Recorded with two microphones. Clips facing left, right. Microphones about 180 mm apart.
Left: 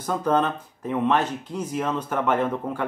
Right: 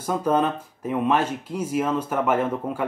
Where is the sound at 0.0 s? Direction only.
10° right (ahead or behind).